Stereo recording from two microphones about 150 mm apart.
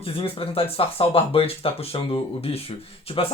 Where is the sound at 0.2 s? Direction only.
40° left (ahead or behind).